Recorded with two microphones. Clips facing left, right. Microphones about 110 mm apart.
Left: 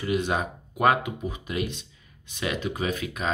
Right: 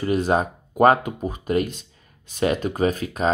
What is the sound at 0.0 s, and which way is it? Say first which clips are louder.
Speech: right 6 dB; 40° right (ahead or behind).